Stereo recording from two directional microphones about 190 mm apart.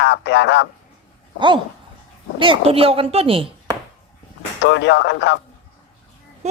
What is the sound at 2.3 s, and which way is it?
A woman's voice, 25° right (ahead or behind).